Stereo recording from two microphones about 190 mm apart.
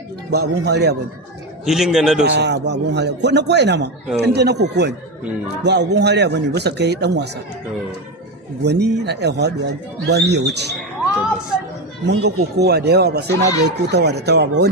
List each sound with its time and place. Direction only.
0.3 s a man's voice: 60° right (ahead or behind)
1.6 s a man's voice: centre (ahead or behind)
2.3 s a man's voice: 65° right (ahead or behind)
8.6 s a man's voice: 60° right (ahead or behind)
12.0 s a man's voice: 60° right (ahead or behind)